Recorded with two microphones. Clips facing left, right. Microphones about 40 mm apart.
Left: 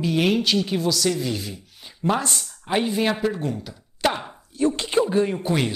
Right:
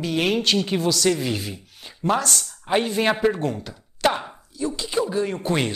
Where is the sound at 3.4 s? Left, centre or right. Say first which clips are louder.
Right 2 dB; centre.